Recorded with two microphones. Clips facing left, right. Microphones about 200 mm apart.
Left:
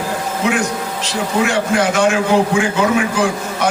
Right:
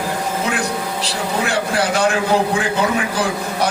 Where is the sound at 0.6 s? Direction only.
35° right (ahead or behind).